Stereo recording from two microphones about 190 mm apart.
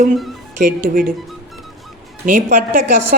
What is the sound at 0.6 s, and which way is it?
Speech, 45° right (ahead or behind).